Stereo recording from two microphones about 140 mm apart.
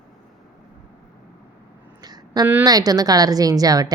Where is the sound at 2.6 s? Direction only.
25° right (ahead or behind).